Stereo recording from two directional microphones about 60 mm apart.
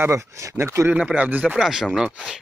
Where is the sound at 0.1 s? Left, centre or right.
Right.